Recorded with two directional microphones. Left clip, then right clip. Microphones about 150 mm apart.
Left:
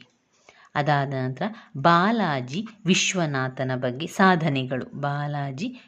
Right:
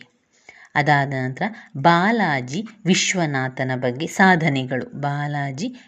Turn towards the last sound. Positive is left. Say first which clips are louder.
# right 4 dB
turn(degrees=-5)  # may be behind; listen again after turning